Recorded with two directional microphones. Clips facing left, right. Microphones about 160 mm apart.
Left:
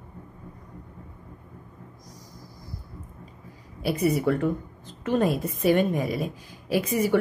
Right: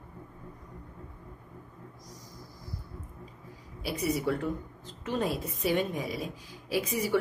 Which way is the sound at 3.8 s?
55° left (ahead or behind).